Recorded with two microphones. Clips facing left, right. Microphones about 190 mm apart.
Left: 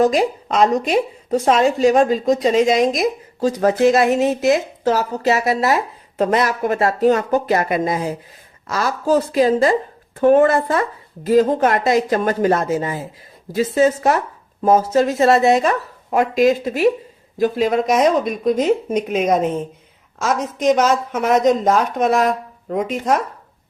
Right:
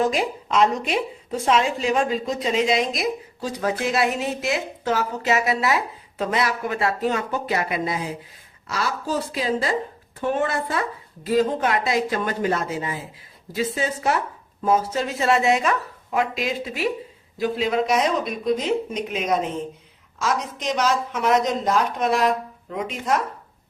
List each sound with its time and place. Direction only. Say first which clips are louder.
0.0 s a woman's voice: left 6 dB; 40° left (ahead or behind)